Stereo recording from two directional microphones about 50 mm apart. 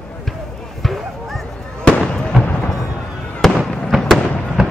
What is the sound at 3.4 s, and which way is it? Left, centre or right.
Fireworks, centre.